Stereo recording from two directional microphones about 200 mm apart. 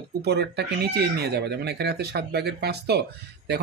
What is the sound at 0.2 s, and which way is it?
Speech, 55° right (ahead or behind).